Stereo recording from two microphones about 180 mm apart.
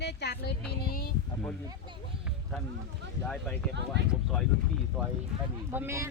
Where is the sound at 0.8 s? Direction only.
55° left (ahead or behind).